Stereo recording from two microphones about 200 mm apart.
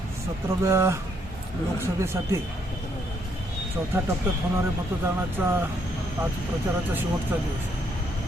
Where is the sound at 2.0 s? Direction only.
10° right (ahead or behind).